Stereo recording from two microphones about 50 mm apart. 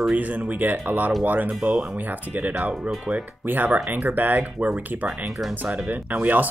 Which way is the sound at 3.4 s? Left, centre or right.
Right.